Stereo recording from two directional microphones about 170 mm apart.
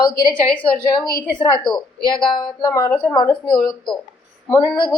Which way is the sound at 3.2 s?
25° left (ahead or behind).